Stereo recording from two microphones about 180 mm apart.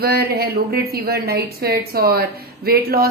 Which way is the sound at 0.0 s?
60° right (ahead or behind).